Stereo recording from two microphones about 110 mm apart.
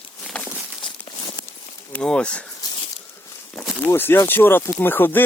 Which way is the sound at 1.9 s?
5° left (ahead or behind).